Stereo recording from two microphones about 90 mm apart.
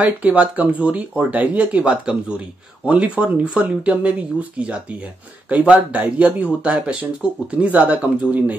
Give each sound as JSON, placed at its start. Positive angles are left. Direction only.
{"t": 0.0, "sound": "speech", "side_deg": -15}